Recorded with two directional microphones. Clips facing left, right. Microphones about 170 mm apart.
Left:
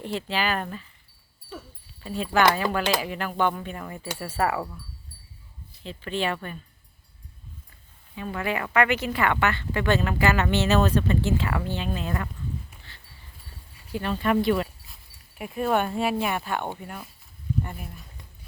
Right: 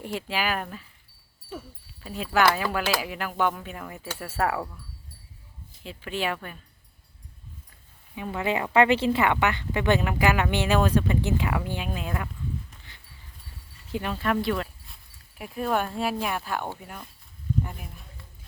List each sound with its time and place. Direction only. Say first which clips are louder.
0.0 s speech: left 1 dB; 10° right (ahead or behind)
2.0 s speech: left 1 dB; 5° right (ahead or behind)
4.1 s speech: left 1 dB; 10° left (ahead or behind)
5.8 s speech: left 2 dB; 10° right (ahead or behind)
8.1 s speech: right 1 dB; 15° right (ahead or behind)
12.9 s dog: left 1 dB; 20° right (ahead or behind)
13.9 s speech: left 2 dB; 10° right (ahead or behind)
14.2 s speech: left 4 dB; centre (ahead or behind)